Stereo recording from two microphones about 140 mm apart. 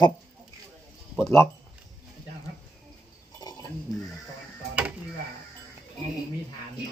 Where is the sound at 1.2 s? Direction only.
20° left (ahead or behind).